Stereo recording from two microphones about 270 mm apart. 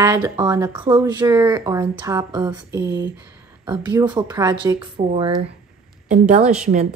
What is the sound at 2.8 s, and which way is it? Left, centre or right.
Speech, right.